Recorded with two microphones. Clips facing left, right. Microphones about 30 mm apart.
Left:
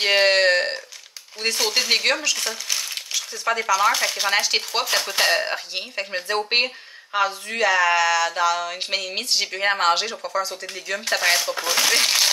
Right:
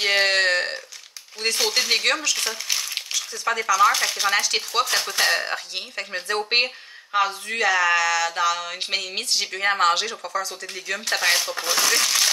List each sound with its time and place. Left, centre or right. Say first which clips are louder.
0.0 s a sound: left 2 dB; centre
1.4 s speech: even; centre
2.3 s speech: even; centre
11.7 s speech: left 1 dB; left